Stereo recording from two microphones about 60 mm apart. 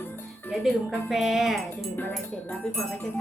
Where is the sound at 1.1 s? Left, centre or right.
Centre.